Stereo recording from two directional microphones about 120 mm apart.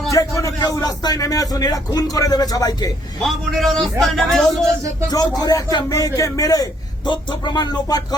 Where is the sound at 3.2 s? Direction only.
Centre (ahead or behind).